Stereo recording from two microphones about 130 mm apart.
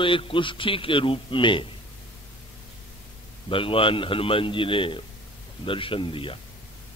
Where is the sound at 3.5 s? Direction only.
45° left (ahead or behind).